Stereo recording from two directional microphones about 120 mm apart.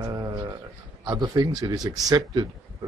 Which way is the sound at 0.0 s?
30° right (ahead or behind).